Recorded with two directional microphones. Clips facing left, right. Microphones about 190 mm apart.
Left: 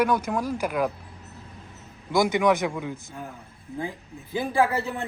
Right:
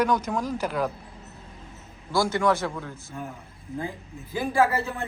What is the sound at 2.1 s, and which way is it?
Speech, 15° left (ahead or behind).